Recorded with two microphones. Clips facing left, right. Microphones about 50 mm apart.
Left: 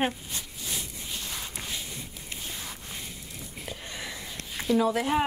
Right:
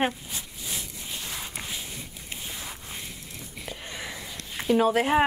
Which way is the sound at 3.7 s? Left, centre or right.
Right.